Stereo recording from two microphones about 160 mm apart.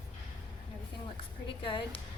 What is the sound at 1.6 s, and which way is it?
Speech, 30° left (ahead or behind).